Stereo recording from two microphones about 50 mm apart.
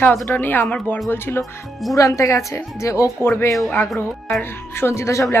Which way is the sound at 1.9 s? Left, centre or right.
Left.